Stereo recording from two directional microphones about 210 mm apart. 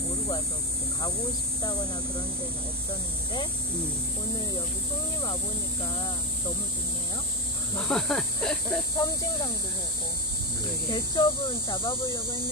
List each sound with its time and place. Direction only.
1.6 s speech: 20° left (ahead or behind)
5.9 s speech: 20° left (ahead or behind)
7.7 s speech: 5° left (ahead or behind)
8.9 s speech: 15° left (ahead or behind)
10.9 s speech: 20° left (ahead or behind)